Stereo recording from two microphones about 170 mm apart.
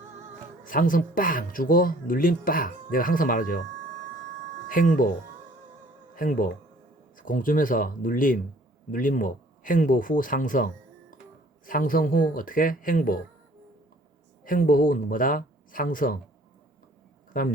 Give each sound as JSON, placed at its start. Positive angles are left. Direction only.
{"t": 0.6, "sound": "speech", "side_deg": 55}
{"t": 4.7, "sound": "speech", "side_deg": 50}
{"t": 6.1, "sound": "speech", "side_deg": 55}
{"t": 14.4, "sound": "speech", "side_deg": 55}
{"t": 17.3, "sound": "speech", "side_deg": 55}